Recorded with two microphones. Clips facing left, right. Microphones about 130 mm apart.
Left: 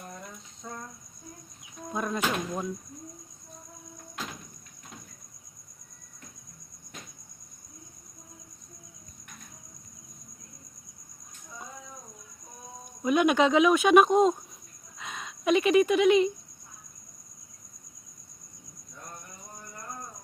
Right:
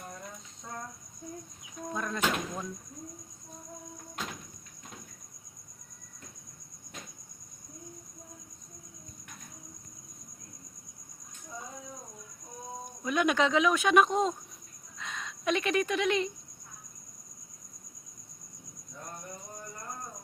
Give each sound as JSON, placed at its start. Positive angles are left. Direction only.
{"t": 1.9, "sound": "speech", "side_deg": 15}
{"t": 13.0, "sound": "speech", "side_deg": 15}
{"t": 14.9, "sound": "a sound", "side_deg": 10}